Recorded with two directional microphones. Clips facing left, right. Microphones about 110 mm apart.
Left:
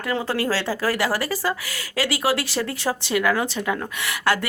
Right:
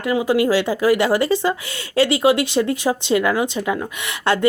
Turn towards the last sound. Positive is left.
turn(degrees=-25)  # may be behind; listen again after turning